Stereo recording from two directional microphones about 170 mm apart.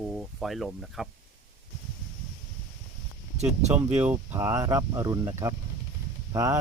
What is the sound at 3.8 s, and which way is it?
Speech, 10° right (ahead or behind).